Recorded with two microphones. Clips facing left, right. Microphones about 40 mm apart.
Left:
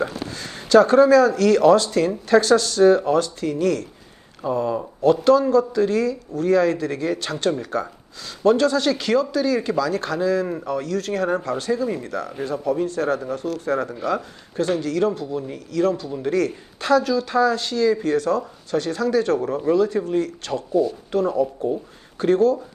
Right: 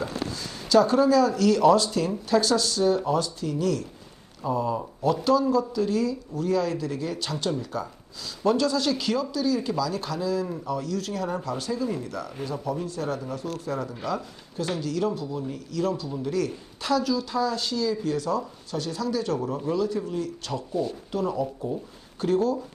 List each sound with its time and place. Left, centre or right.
0.0 s speech: left